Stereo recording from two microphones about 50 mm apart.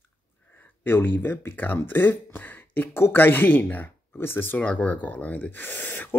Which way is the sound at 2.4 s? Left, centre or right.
Left.